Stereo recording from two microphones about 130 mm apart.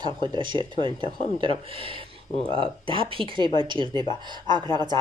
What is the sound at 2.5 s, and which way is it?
A woman's voice, 40° right (ahead or behind).